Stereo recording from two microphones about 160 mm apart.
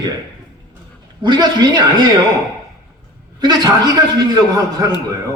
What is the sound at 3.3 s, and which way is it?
Speech, 25° right (ahead or behind).